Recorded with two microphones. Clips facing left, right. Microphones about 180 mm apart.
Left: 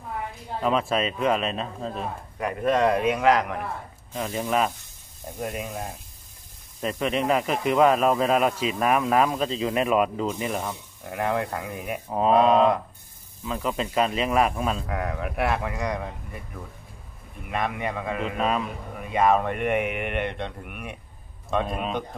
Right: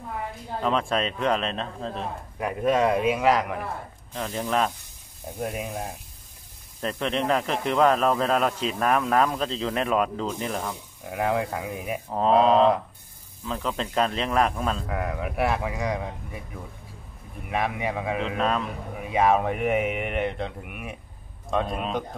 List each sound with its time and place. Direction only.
0.6 s a man's voice: 5° left (ahead or behind)
4.1 s a man's voice: 10° left (ahead or behind)
5.4 s speech: 10° right (ahead or behind)
6.8 s a man's voice: 10° left (ahead or behind)
11.1 s speech: 5° right (ahead or behind)
12.1 s a man's voice: 5° left (ahead or behind)
17.5 s a man's voice: 5° right (ahead or behind)
18.2 s a man's voice: 5° left (ahead or behind)